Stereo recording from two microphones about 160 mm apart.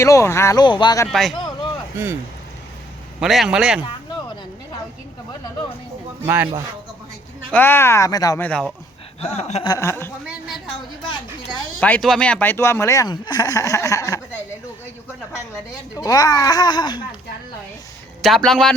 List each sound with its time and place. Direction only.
0.0 s speech: 15° left (ahead or behind)
0.6 s speech: 30° left (ahead or behind)
1.0 s a man's voice: centre (ahead or behind)
3.2 s a man's voice: centre (ahead or behind)
6.2 s speech: 10° right (ahead or behind)
7.5 s speech: 15° left (ahead or behind)
8.4 s speech: 5° left (ahead or behind)
9.2 s chuckle: 40° left (ahead or behind)
9.6 s speech: 20° left (ahead or behind)
10.2 s a sound: centre (ahead or behind)
11.8 s speech: 5° left (ahead or behind)
16.0 s speech: 25° left (ahead or behind)
18.2 s a man's voice: centre (ahead or behind)